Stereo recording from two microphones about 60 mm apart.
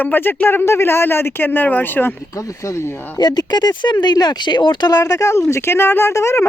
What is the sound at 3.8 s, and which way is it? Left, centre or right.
Speech, left.